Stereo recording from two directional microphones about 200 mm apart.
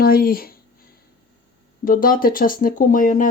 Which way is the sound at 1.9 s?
45° left (ahead or behind).